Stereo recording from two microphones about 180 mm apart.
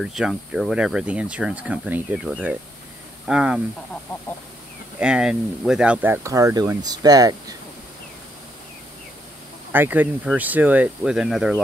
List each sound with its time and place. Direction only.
0.0 s speech: centre (ahead or behind)
4.9 s speech: 5° right (ahead or behind); by 7.5 s 20° right (ahead or behind)
9.7 s speech: 10° right (ahead or behind)